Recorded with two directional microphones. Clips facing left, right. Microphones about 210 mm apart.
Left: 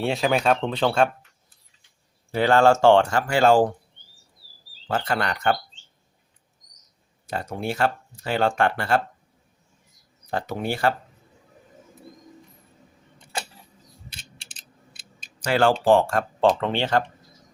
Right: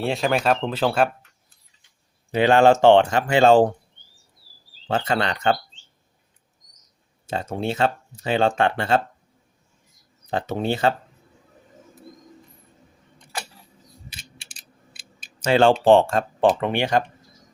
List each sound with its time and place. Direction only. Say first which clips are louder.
0.0 s speech: even; centre (ahead or behind)
2.3 s speech: right 2 dB; 20° right (ahead or behind)
4.9 s speech: right 2 dB; 25° right (ahead or behind)
7.3 s speech: right 3 dB; 25° right (ahead or behind)
10.2 s speech: right 3 dB; 20° right (ahead or behind)
15.4 s speech: right 3 dB; 25° right (ahead or behind)